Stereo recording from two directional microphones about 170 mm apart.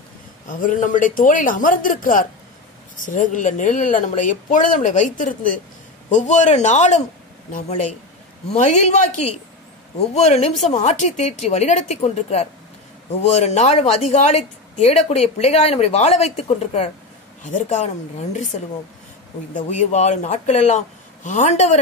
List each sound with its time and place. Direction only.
0.5 s a woman's voice: 50° left (ahead or behind)